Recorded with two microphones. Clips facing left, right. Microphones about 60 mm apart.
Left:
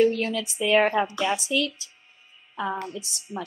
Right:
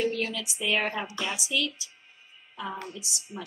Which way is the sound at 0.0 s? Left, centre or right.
Left.